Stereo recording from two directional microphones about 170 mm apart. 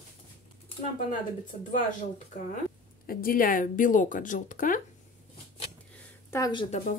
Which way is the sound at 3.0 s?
60° left (ahead or behind).